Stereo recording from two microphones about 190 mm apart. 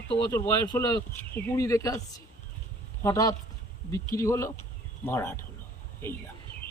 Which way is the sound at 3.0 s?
15° left (ahead or behind).